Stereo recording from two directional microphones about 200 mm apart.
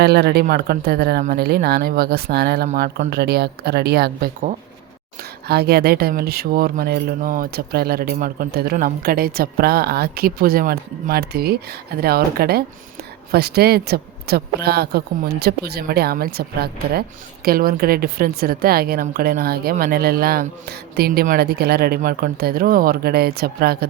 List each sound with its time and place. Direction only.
0.0 s speech: 55° right (ahead or behind)
2.6 s speech: 40° right (ahead or behind)